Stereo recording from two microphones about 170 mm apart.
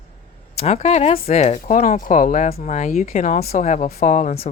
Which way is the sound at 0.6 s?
40° left (ahead or behind).